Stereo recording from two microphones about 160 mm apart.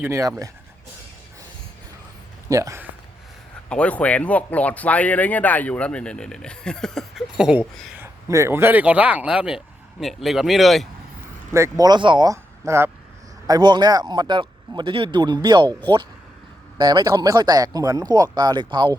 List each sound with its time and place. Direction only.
0.0 s speech: 20° right (ahead or behind)
2.5 s speech: 20° right (ahead or behind)
3.7 s speech: 10° left (ahead or behind)
7.9 s speech: 15° right (ahead or behind); by 10.8 s centre (ahead or behind)
11.5 s speech: 20° right (ahead or behind)
16.7 s speech: 25° right (ahead or behind)